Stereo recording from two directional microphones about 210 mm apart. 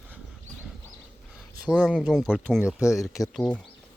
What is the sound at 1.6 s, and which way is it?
Speech, 5° left (ahead or behind).